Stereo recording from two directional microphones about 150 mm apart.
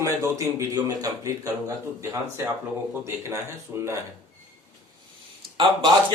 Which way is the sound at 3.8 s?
20° right (ahead or behind).